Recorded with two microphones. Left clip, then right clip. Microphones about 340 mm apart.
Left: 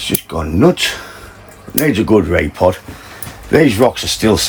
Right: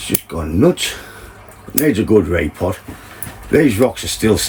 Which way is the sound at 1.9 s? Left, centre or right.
Centre.